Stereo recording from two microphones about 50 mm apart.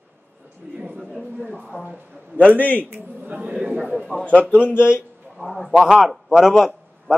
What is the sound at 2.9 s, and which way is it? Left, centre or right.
Speech, right.